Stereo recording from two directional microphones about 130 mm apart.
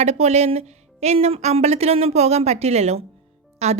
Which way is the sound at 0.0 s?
55° right (ahead or behind).